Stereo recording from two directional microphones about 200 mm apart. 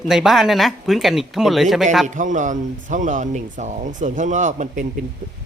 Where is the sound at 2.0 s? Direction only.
40° right (ahead or behind).